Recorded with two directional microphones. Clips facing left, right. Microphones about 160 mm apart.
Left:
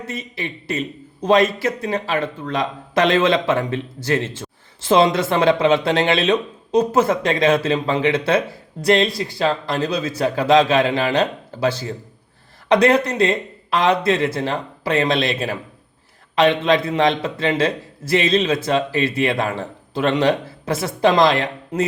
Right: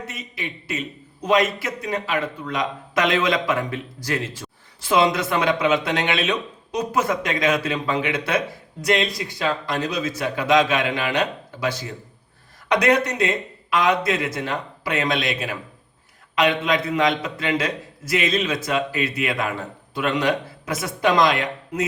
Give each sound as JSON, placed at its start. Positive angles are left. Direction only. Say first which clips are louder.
{"t": 0.1, "sound": "a man's voice", "louder": "left 5 dB", "side_deg": 30}